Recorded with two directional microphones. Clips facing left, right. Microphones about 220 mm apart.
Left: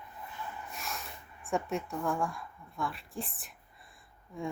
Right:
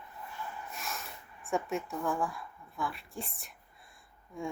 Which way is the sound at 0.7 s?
Centre (ahead or behind).